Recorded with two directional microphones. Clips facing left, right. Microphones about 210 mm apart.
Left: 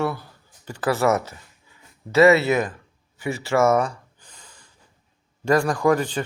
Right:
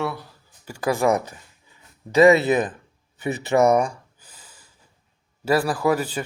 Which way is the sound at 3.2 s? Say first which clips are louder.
Right 2 dB; 20° right (ahead or behind).